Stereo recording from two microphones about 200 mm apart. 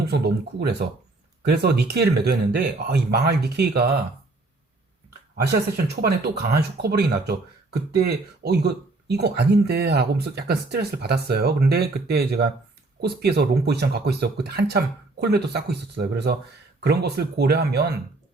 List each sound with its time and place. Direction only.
0.0 s speech: 55° right (ahead or behind)
5.7 s speech: 50° right (ahead or behind)